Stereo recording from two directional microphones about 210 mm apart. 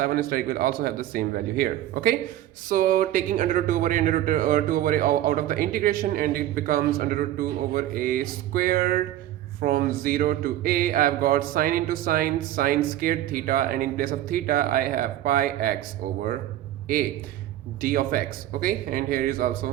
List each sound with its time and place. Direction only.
0.0 s speech: 45° right (ahead or behind)
17.7 s speech: 45° right (ahead or behind)